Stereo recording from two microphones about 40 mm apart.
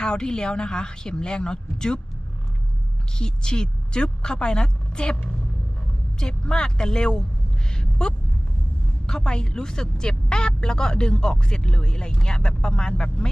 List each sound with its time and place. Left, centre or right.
0.0 s speech: centre
3.2 s speech: left
6.1 s speech: centre
7.7 s a sound: left
9.0 s speech: centre